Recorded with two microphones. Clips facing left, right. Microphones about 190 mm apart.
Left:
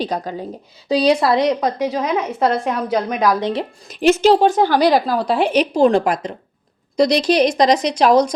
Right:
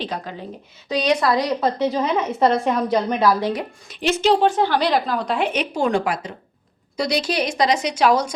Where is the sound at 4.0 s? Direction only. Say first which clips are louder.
Left 5 dB; 45° left (ahead or behind).